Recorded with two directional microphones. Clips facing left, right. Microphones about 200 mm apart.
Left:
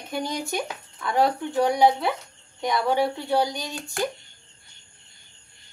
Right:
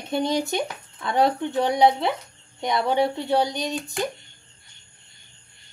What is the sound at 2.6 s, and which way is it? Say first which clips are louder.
Speech: right 1 dB; 25° right (ahead or behind).